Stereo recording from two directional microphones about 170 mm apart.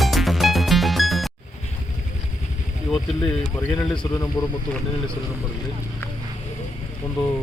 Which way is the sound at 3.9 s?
25° left (ahead or behind).